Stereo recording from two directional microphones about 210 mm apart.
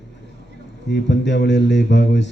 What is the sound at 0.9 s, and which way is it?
A man's voice, 55° left (ahead or behind).